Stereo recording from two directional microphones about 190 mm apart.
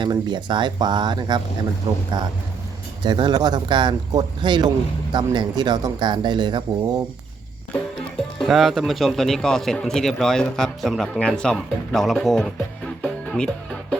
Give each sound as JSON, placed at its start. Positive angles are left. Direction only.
{"t": 0.0, "sound": "speech", "side_deg": -25}
{"t": 8.4, "sound": "a man's voice", "side_deg": 0}